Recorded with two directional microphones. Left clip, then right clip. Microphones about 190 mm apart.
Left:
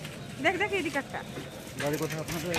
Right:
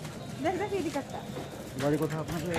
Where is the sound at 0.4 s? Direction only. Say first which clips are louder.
Left 3 dB; 20° left (ahead or behind).